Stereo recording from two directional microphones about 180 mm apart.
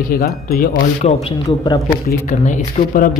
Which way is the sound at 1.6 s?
20° left (ahead or behind).